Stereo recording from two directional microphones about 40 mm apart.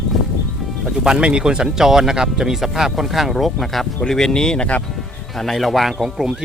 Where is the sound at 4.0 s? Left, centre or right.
Centre.